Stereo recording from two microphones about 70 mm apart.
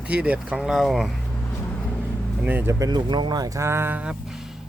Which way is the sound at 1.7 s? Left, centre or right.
Left.